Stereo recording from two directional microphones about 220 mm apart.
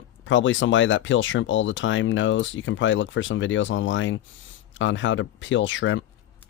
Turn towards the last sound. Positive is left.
turn(degrees=60)  # may be behind; listen again after turning